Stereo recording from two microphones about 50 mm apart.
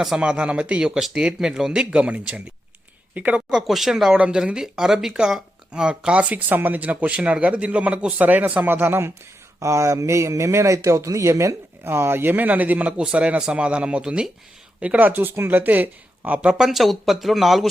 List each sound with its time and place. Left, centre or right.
0.2 s a man's voice: right
3.5 s speech: centre
4.2 s a man's voice: right
8.7 s speech: right
9.6 s speech: right
11.8 s a man's voice: right
15.0 s speech: right
16.4 s speech: centre